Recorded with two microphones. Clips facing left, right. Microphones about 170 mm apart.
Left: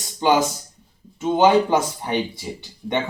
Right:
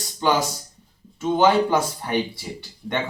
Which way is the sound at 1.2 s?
15° left (ahead or behind).